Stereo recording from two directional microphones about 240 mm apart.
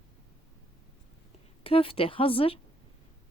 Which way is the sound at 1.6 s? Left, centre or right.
Left.